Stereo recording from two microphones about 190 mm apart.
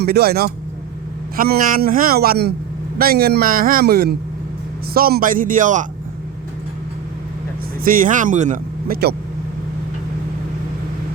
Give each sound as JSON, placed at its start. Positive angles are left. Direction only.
{"t": 0.0, "sound": "speech", "side_deg": -55}
{"t": 7.9, "sound": "speech", "side_deg": -45}